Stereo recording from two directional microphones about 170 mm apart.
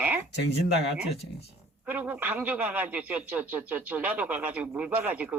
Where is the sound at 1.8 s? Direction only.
10° right (ahead or behind).